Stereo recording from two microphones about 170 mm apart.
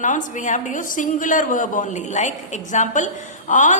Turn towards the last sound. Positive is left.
turn(degrees=50)  # may be behind; listen again after turning